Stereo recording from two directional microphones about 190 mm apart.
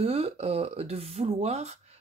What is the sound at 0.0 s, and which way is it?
Speech, 35° right (ahead or behind).